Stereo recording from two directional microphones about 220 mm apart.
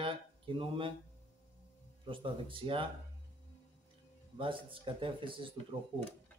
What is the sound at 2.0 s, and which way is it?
Speech, 25° right (ahead or behind).